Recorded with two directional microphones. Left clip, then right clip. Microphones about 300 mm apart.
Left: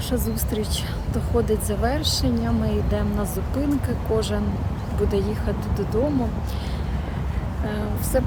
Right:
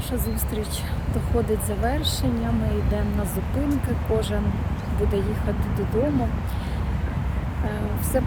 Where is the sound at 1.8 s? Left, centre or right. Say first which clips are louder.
Left 3 dB; centre.